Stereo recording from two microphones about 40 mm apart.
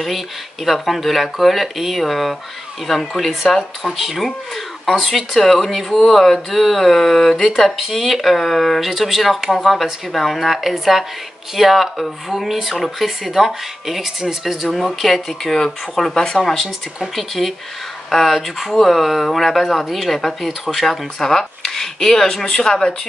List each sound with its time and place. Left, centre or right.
0.7 s speech: centre
16.5 s speech: centre